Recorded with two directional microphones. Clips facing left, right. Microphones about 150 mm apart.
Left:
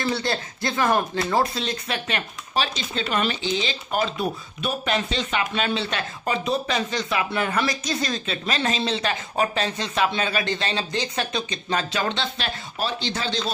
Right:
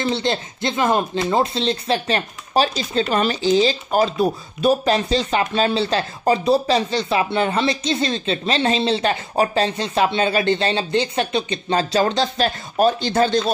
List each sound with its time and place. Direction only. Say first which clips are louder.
0.0 s speech: right 4 dB; 20° right (ahead or behind); by 13.5 s 50° right (ahead or behind)